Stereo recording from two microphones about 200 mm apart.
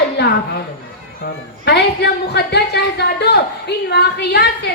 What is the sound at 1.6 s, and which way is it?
A woman's voice, 55° left (ahead or behind).